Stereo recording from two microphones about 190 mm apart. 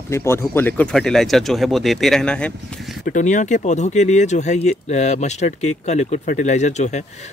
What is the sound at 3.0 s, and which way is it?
Speech, 40° left (ahead or behind).